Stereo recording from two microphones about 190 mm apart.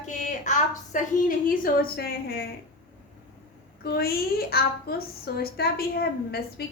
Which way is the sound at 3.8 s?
55° left (ahead or behind).